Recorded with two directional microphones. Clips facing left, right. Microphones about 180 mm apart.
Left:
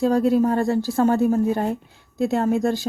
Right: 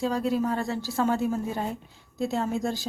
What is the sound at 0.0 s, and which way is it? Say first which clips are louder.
A woman's voice: left 8 dB; 50° left (ahead or behind).